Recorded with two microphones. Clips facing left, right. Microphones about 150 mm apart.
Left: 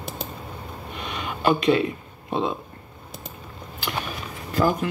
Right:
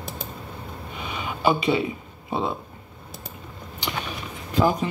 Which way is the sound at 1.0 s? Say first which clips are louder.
Right 1 dB; 10° right (ahead or behind).